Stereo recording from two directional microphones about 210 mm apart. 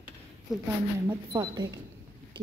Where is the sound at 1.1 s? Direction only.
20° right (ahead or behind).